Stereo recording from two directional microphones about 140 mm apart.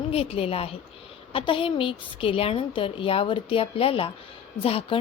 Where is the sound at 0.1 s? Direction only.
45° left (ahead or behind).